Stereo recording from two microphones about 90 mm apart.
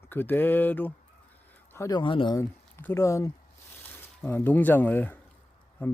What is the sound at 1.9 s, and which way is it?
Speech, 65° left (ahead or behind).